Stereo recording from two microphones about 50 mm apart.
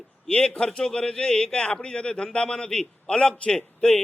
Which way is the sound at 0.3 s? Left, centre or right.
Centre.